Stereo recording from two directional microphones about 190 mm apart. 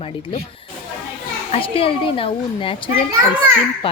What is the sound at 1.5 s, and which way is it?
Speech, 30° left (ahead or behind).